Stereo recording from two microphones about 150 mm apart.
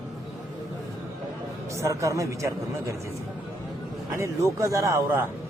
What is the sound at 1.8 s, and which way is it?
A man's voice, 20° right (ahead or behind).